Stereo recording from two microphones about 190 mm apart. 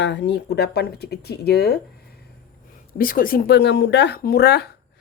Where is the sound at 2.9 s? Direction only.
50° left (ahead or behind).